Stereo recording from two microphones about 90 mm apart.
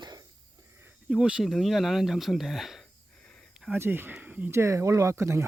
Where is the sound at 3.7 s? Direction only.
25° right (ahead or behind).